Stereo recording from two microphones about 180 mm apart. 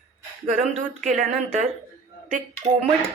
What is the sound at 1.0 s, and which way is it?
A woman's voice, 45° right (ahead or behind).